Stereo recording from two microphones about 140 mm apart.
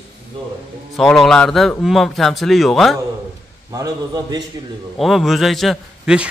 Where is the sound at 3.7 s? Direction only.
25° right (ahead or behind).